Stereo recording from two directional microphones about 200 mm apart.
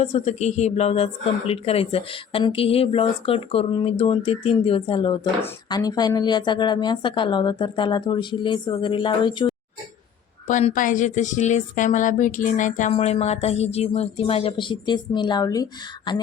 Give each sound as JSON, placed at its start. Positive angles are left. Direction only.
{"t": 0.0, "sound": "speech", "side_deg": 35}
{"t": 10.4, "sound": "a woman's voice", "side_deg": 40}